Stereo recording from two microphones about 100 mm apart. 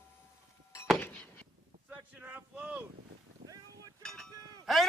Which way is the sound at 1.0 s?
15° left (ahead or behind).